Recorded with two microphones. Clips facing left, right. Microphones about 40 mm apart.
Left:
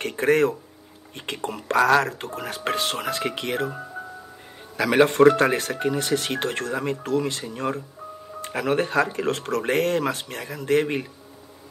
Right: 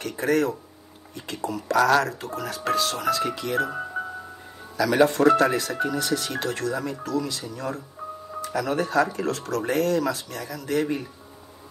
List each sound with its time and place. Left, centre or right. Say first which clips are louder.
0.0 s speech: left 3 dB; left
4.7 s speech: left 2 dB; left